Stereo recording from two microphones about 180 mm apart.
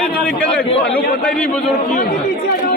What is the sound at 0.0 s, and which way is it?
A man's voice, 5° left (ahead or behind).